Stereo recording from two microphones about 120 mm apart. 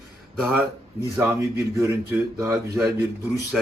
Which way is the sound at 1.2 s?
20° right (ahead or behind).